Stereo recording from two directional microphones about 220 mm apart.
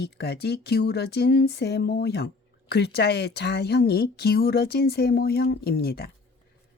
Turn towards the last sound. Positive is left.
turn(degrees=45)  # may be behind; listen again after turning